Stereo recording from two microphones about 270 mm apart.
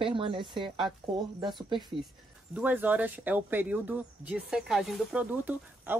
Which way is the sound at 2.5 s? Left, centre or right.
Centre.